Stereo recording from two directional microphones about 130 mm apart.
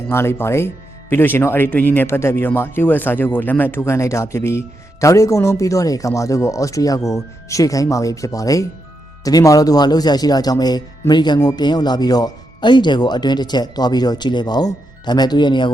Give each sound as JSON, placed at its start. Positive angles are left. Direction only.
{"t": 0.1, "sound": "speech", "side_deg": 20}